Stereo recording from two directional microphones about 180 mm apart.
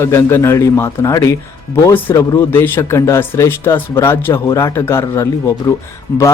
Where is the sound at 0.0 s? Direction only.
15° left (ahead or behind).